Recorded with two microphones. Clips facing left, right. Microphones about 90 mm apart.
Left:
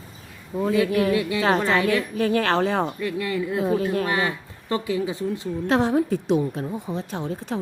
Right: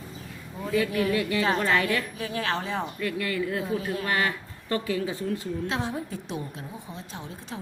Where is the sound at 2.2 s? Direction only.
60° left (ahead or behind).